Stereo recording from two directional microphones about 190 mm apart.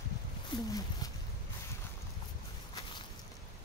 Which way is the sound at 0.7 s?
20° left (ahead or behind).